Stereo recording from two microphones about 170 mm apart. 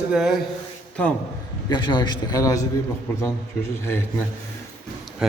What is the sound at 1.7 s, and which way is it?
Speech, 25° left (ahead or behind).